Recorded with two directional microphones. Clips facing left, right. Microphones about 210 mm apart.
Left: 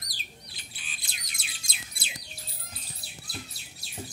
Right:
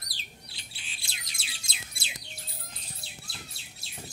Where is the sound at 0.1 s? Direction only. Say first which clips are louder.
Left 1 dB; 25° right (ahead or behind).